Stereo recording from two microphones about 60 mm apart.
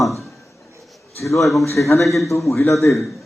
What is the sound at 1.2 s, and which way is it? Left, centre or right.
Speech, left.